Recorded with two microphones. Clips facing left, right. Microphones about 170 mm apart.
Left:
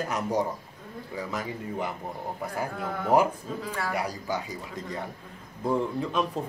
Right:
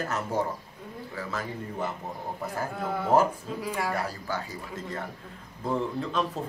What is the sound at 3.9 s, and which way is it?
A man's voice, 15° left (ahead or behind).